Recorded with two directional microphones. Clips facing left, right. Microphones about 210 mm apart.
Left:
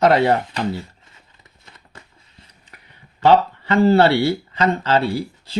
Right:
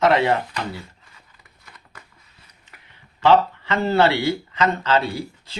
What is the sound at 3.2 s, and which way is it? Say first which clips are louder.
Speech: left 2 dB; 40° left (ahead or behind).